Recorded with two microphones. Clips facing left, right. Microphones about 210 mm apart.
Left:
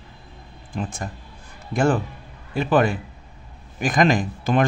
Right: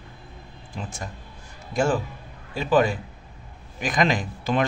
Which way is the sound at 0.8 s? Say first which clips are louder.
Left 6 dB; 55° left (ahead or behind).